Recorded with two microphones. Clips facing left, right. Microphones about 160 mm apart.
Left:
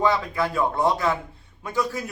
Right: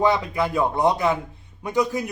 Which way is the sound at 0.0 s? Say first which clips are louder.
Right 2 dB; 20° right (ahead or behind).